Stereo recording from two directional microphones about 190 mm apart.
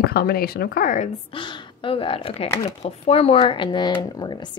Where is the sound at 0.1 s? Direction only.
50° left (ahead or behind).